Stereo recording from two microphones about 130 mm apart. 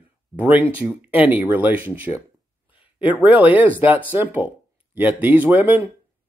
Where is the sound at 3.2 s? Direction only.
10° right (ahead or behind).